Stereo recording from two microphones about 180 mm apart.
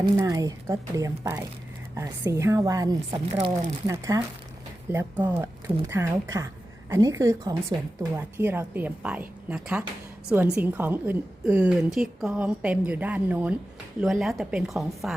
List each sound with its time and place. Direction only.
0.2 s speech: 20° right (ahead or behind)
3.1 s speech: 35° right (ahead or behind)
3.8 s a woman's voice: 20° right (ahead or behind); by 15.1 s centre (ahead or behind)